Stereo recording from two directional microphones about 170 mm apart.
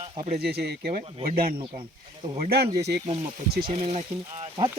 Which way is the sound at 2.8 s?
75° right (ahead or behind).